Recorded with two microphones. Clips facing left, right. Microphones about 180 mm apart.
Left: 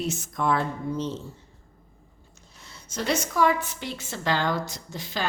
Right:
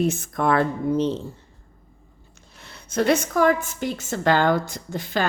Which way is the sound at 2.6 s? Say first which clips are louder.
Right 8 dB; 60° right (ahead or behind).